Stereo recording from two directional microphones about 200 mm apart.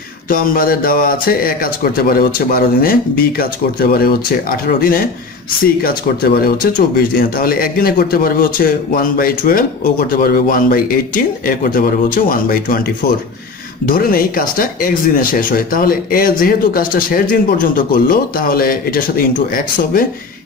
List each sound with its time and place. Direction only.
0.3 s speech: 45° left (ahead or behind)
13.8 s speech: 45° left (ahead or behind)